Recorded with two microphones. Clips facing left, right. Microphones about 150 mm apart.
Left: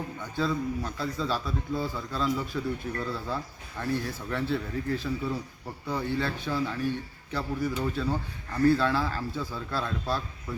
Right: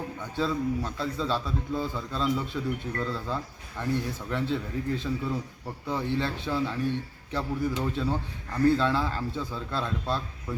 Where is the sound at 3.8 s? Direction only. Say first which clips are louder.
Right 1 dB; 20° right (ahead or behind).